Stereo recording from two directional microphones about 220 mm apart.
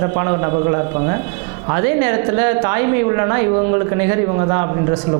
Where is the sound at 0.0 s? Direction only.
20° right (ahead or behind).